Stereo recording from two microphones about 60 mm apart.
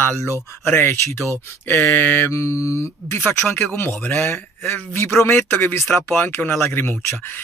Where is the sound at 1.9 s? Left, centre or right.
Left.